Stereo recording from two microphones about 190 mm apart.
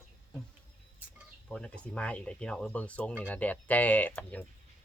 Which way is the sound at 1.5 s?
5° left (ahead or behind).